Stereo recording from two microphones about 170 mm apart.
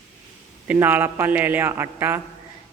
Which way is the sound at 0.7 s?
10° right (ahead or behind).